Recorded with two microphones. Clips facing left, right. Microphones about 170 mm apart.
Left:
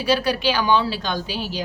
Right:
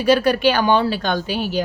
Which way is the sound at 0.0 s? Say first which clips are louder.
Right 5 dB; 55° right (ahead or behind).